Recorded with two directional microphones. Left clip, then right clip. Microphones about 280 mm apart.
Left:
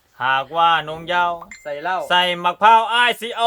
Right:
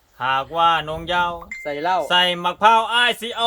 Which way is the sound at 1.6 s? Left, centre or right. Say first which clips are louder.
Right 2 dB; right.